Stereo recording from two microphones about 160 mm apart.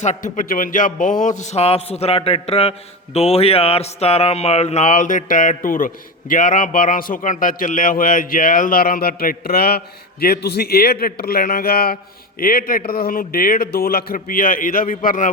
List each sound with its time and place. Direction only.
0.0 s a man's voice: 50° left (ahead or behind)